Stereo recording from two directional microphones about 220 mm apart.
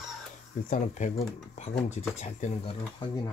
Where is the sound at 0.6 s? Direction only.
35° left (ahead or behind).